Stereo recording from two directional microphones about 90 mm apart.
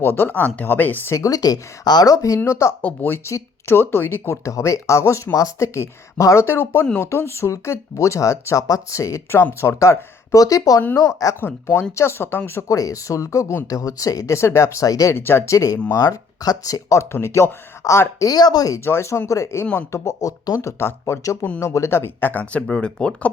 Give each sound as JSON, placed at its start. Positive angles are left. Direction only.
{"t": 0.0, "sound": "speech", "side_deg": 25}
{"t": 1.1, "sound": "speech", "side_deg": 40}
{"t": 2.8, "sound": "speech", "side_deg": 20}
{"t": 12.7, "sound": "speech", "side_deg": 40}
{"t": 15.1, "sound": "speech", "side_deg": 25}
{"t": 18.3, "sound": "speech", "side_deg": 50}
{"t": 18.9, "sound": "speech", "side_deg": 30}